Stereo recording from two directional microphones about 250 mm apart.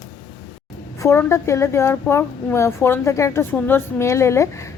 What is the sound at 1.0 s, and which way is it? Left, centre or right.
A woman's voice, centre.